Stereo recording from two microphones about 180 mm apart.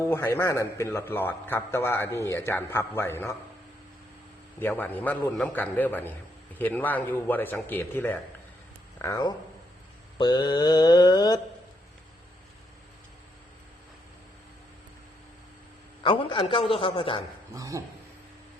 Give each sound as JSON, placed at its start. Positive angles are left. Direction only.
{"t": 0.1, "sound": "a man's voice", "side_deg": 10}
{"t": 4.6, "sound": "a man's voice", "side_deg": 10}
{"t": 10.2, "sound": "mantra", "side_deg": 25}
{"t": 16.0, "sound": "mantra", "side_deg": 30}
{"t": 17.5, "sound": "speech", "side_deg": -20}